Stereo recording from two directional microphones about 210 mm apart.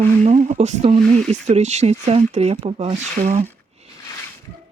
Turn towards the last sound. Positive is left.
turn(degrees=-30)  # may be behind; listen again after turning